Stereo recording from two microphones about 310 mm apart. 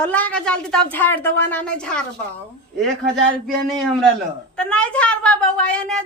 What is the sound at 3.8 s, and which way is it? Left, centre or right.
Speech, centre.